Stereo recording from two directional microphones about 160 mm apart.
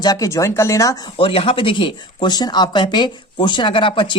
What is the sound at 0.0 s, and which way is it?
Speech, 20° left (ahead or behind).